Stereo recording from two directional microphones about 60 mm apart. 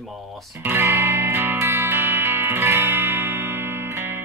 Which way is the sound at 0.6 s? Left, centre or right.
Right.